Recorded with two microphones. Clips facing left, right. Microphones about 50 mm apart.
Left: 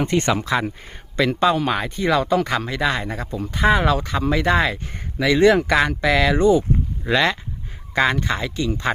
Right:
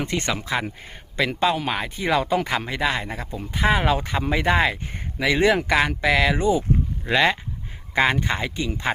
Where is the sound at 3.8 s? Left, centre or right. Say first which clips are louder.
Left 2 dB; centre.